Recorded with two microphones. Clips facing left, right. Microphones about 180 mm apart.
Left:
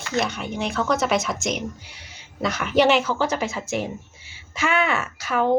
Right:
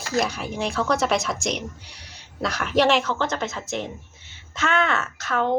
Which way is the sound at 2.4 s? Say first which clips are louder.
Left 2 dB; centre (ahead or behind).